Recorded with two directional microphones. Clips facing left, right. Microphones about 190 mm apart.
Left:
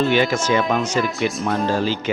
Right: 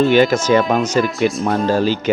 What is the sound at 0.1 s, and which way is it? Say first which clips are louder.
Speech: right 5 dB; 40° right (ahead or behind).